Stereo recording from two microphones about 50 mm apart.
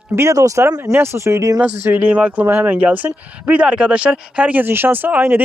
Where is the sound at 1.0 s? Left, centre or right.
Right.